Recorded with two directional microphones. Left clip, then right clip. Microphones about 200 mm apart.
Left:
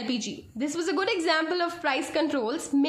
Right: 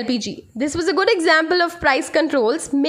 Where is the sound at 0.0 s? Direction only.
40° right (ahead or behind).